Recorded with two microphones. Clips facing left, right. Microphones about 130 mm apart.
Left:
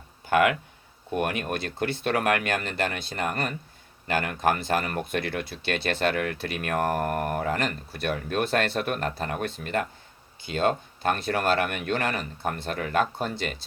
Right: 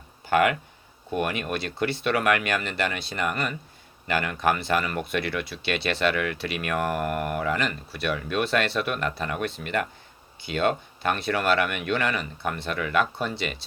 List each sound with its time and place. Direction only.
0.3 s speech: 55° left (ahead or behind)